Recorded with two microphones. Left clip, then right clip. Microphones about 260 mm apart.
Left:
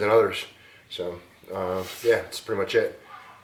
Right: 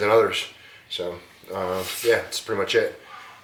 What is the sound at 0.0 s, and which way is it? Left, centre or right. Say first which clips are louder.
Speech: right 2 dB; centre.